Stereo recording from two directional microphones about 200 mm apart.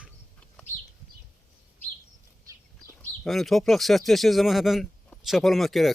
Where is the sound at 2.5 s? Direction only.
15° right (ahead or behind).